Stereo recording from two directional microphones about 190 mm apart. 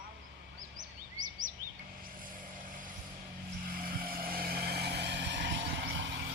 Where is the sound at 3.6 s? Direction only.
50° right (ahead or behind).